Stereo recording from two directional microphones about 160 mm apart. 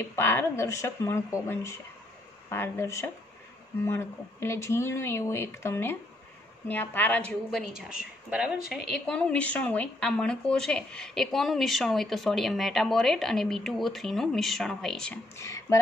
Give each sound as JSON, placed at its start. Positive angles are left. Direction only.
{"t": 0.1, "sound": "a woman's voice", "side_deg": 15}
{"t": 15.3, "sound": "speech", "side_deg": 20}